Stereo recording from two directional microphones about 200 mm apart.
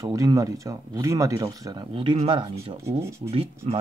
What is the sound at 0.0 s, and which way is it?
A man's voice, 15° right (ahead or behind).